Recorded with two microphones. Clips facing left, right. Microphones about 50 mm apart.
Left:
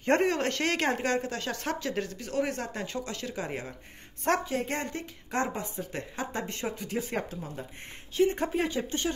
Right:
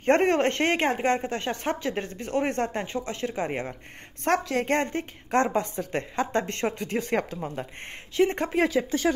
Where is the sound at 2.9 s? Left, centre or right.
Right.